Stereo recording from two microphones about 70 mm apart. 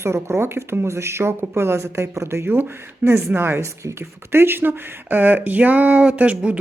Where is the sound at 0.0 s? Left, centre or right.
Right.